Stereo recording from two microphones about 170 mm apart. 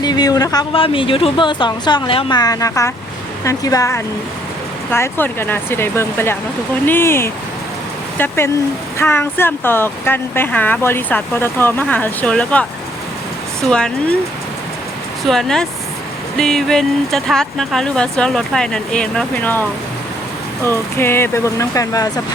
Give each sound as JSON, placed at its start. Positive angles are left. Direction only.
{"t": 0.0, "sound": "speech", "side_deg": 25}
{"t": 9.0, "sound": "speech", "side_deg": 15}
{"t": 13.7, "sound": "speech", "side_deg": 5}
{"t": 15.2, "sound": "speech", "side_deg": 0}
{"t": 20.7, "sound": "speech", "side_deg": 15}